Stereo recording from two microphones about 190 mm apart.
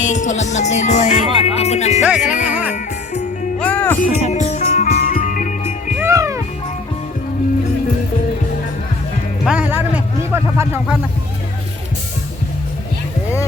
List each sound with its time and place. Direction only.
0.0 s music: 40° left (ahead or behind)
3.6 s music: 10° left (ahead or behind)
4.0 s music: 35° left (ahead or behind)
6.0 s music: 15° right (ahead or behind)
9.4 s music: 5° right (ahead or behind)